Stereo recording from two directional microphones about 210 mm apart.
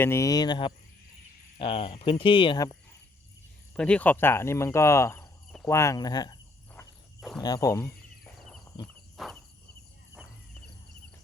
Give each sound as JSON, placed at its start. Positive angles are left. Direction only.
{"t": 0.0, "sound": "speech", "side_deg": 15}
{"t": 3.8, "sound": "speech", "side_deg": 5}
{"t": 7.2, "sound": "speech", "side_deg": 0}
{"t": 7.4, "sound": "speech", "side_deg": 15}
{"t": 7.9, "sound": "a sound", "side_deg": 0}
{"t": 8.6, "sound": "a sound", "side_deg": 20}
{"t": 9.1, "sound": "walk", "side_deg": 0}